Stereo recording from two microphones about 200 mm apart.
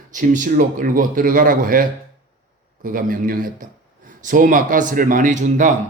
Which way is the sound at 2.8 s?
45° right (ahead or behind).